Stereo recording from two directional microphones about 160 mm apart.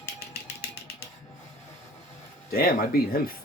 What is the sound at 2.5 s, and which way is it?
Speech, 70° left (ahead or behind).